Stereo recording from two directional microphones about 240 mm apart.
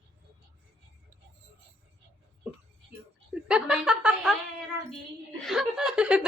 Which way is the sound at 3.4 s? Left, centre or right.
Centre.